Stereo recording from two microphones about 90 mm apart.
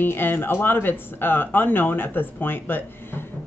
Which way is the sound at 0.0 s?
25° left (ahead or behind).